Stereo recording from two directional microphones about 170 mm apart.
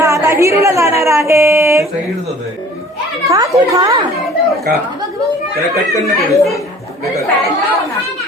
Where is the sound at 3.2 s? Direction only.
20° right (ahead or behind).